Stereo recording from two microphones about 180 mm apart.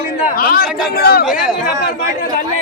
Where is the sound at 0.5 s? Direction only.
60° left (ahead or behind).